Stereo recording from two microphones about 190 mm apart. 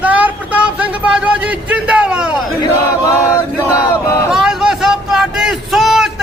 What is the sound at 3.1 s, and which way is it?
Chant, 15° left (ahead or behind).